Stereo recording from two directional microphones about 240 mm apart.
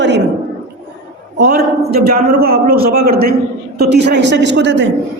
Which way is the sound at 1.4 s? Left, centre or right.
Right.